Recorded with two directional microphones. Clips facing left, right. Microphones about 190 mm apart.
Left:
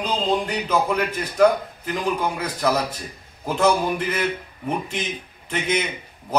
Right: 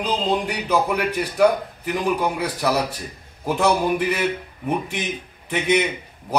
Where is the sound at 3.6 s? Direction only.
15° right (ahead or behind).